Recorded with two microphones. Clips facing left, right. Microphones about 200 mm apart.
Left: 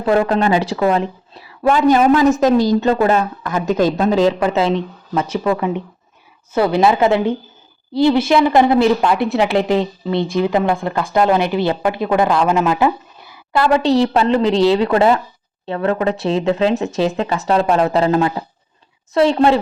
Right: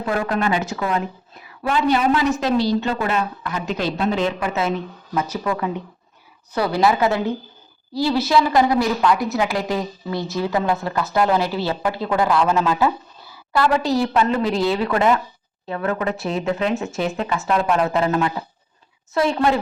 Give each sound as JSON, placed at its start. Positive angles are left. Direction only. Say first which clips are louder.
{"t": 0.0, "sound": "speech", "louder": "left 7 dB", "side_deg": 30}
{"t": 1.6, "sound": "speech", "louder": "left 6 dB", "side_deg": 45}